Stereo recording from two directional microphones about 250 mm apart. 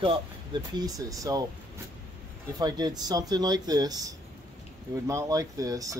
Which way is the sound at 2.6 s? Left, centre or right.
Centre.